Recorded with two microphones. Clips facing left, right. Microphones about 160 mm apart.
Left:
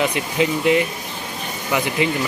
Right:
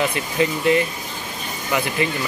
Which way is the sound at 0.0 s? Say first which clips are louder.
Left 1 dB; 15° left (ahead or behind).